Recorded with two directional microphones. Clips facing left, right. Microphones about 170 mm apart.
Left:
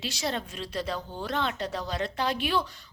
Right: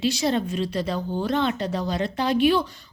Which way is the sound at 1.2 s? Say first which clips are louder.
Right 6 dB; centre (ahead or behind).